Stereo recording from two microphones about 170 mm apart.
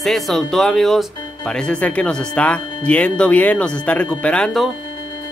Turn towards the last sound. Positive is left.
turn(degrees=5)  # may be behind; listen again after turning